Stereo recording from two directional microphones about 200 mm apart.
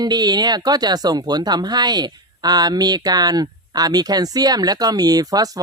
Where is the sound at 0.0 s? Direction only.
20° right (ahead or behind).